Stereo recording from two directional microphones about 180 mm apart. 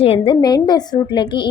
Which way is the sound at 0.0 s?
30° left (ahead or behind).